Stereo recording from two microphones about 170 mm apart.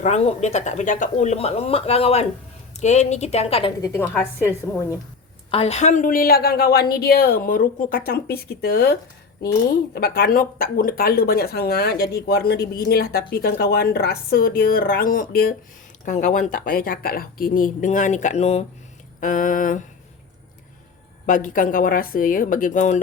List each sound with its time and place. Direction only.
0.0 s speech: 40° left (ahead or behind)
3.8 s a woman's voice: 15° left (ahead or behind)
5.5 s speech: 35° left (ahead or behind); by 15.5 s 60° left (ahead or behind)
16.0 s a woman's voice: 50° left (ahead or behind)
19.2 s a woman's voice: 50° left (ahead or behind)
21.2 s a woman's voice: 50° left (ahead or behind)